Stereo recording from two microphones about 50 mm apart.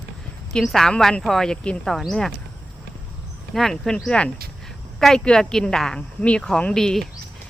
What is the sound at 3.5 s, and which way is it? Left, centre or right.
Speech, centre.